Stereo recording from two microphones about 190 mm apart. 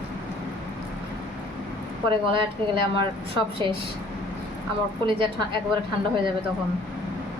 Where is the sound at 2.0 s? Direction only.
25° right (ahead or behind).